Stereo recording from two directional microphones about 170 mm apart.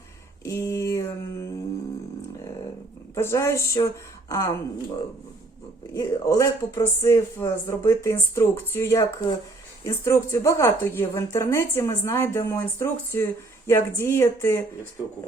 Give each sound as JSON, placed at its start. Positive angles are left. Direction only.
{"t": 0.4, "sound": "speech", "side_deg": 20}
{"t": 3.2, "sound": "speech", "side_deg": 15}
{"t": 5.9, "sound": "speech", "side_deg": 20}